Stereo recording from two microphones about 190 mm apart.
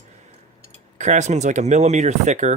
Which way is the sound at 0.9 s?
40° right (ahead or behind).